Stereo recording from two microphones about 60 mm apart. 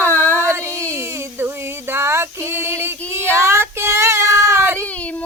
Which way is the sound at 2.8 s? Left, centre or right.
Right.